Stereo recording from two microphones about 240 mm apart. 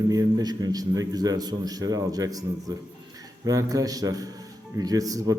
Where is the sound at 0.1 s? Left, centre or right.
Centre.